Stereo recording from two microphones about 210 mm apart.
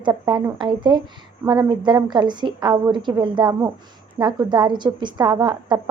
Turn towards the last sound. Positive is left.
turn(degrees=-20)  # may be behind; listen again after turning